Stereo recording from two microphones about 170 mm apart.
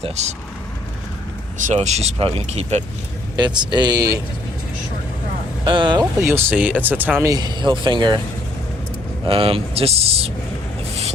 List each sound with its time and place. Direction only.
0.0 s speech: 40° right (ahead or behind)
1.6 s speech: 40° right (ahead or behind)
3.3 s speech: 25° right (ahead or behind)
5.6 s speech: 30° right (ahead or behind); by 7.1 s 10° right (ahead or behind)
7.2 s speech: 20° right (ahead or behind)
9.2 s speech: 35° right (ahead or behind)